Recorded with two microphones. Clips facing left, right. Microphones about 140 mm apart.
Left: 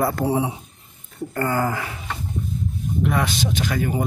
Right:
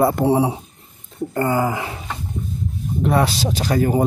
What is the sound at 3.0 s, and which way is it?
Speech, 35° right (ahead or behind).